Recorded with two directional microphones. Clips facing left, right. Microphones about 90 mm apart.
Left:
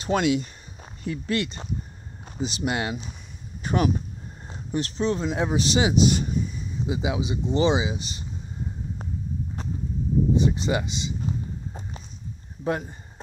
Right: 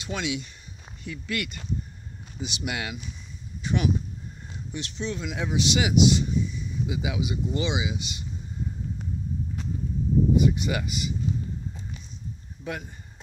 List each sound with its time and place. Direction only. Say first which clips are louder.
0.0 s speech: left 8 dB; 45° left (ahead or behind)
3.6 s speech: left 3 dB; 45° left (ahead or behind)
6.0 s a sound: even; 45° left (ahead or behind)
6.9 s speech: left 4 dB; 30° left (ahead or behind)
10.3 s speech: even; 30° left (ahead or behind)
12.6 s speech: left 7 dB; 35° left (ahead or behind)